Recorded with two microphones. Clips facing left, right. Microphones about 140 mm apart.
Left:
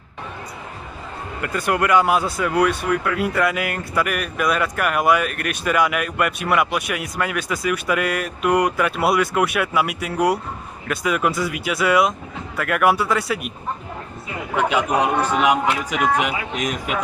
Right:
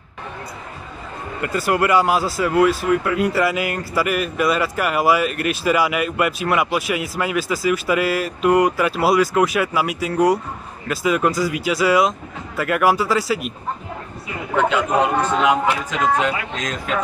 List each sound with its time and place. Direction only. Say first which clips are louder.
1.4 s speech: right 2 dB; centre (ahead or behind)
14.6 s a man's voice: right 1 dB; 15° left (ahead or behind)